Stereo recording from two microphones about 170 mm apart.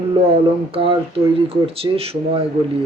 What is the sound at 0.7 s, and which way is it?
Speech, 35° right (ahead or behind).